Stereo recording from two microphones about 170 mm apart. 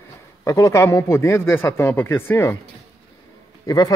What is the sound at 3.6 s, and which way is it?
Speech, 20° left (ahead or behind).